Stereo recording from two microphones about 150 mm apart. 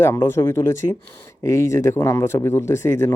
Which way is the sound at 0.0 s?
15° left (ahead or behind).